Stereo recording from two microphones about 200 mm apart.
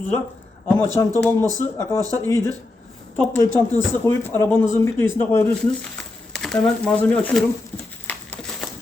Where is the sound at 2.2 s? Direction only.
15° left (ahead or behind).